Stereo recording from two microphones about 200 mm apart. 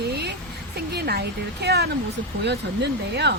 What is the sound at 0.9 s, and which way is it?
Speech, 50° right (ahead or behind).